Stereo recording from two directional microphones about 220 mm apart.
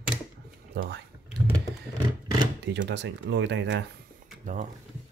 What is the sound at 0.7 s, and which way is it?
Speech, 50° right (ahead or behind).